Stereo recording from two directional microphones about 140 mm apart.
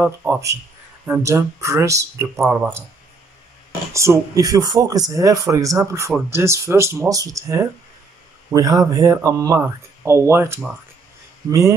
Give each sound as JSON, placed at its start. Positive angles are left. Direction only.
{"t": 0.0, "sound": "speech", "side_deg": -15}
{"t": 3.9, "sound": "speech", "side_deg": -20}